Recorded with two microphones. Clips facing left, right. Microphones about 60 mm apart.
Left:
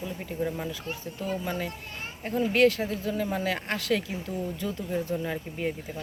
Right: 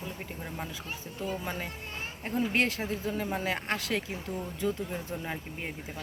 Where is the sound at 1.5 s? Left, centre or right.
Centre.